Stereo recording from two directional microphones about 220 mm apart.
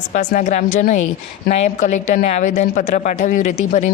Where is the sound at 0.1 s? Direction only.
35° left (ahead or behind).